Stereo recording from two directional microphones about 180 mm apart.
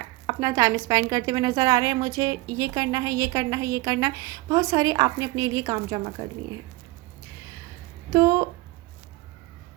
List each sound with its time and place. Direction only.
0.3 s a woman's voice: 20° right (ahead or behind)
8.1 s a woman's voice: 15° right (ahead or behind)